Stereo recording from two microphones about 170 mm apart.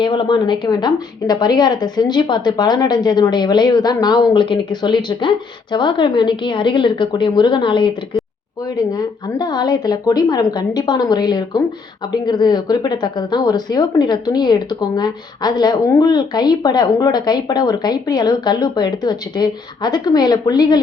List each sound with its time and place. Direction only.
0.0 s speech: 30° left (ahead or behind)